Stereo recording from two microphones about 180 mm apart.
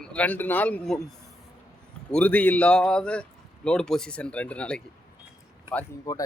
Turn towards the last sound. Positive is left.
turn(degrees=15)  # may be behind; listen again after turning